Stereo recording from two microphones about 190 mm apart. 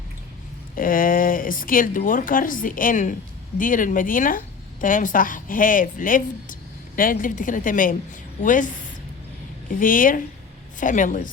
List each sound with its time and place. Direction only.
0.8 s a woman's voice: 45° left (ahead or behind)